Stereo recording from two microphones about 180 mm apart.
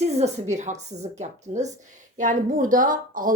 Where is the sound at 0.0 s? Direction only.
35° right (ahead or behind).